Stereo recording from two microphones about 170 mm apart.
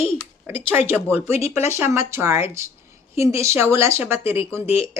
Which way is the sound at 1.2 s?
40° left (ahead or behind).